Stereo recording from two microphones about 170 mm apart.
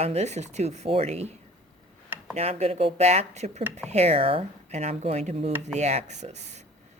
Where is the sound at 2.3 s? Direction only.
35° right (ahead or behind).